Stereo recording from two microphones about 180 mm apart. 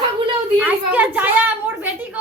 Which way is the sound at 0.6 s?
10° right (ahead or behind).